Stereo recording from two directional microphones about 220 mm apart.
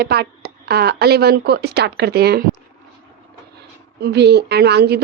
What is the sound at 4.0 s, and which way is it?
A woman's voice, 50° right (ahead or behind).